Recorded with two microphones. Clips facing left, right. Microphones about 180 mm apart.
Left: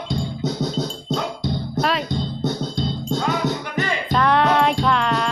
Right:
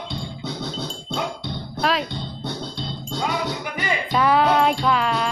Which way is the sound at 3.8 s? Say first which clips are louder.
Even; 10° right (ahead or behind).